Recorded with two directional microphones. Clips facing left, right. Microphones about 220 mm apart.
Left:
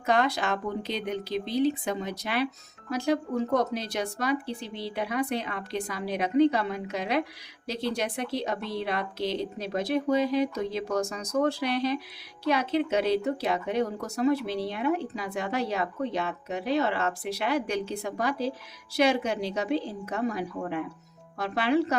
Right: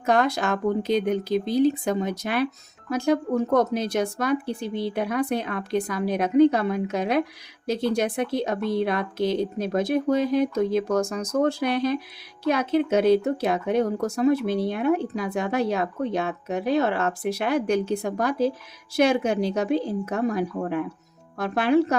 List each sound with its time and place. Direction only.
0.0 s speech: 45° right (ahead or behind)